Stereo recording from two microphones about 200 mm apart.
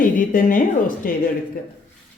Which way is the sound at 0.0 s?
40° left (ahead or behind).